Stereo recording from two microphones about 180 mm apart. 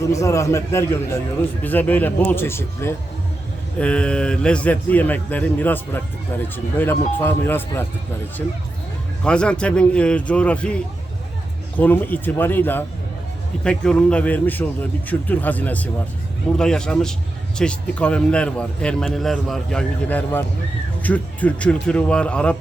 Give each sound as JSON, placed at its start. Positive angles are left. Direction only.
{"t": 0.0, "sound": "a man's voice", "side_deg": 15}
{"t": 9.2, "sound": "a man's voice", "side_deg": 5}
{"t": 11.8, "sound": "a man's voice", "side_deg": 10}